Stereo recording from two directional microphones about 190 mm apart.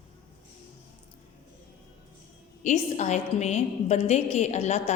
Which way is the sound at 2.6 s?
40° left (ahead or behind).